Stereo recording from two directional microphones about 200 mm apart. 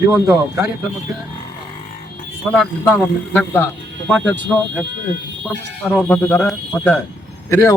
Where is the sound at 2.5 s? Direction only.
5° left (ahead or behind).